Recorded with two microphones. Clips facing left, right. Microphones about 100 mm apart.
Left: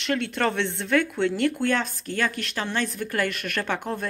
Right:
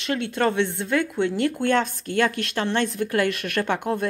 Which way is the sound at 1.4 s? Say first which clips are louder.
Right 5 dB; 30° right (ahead or behind).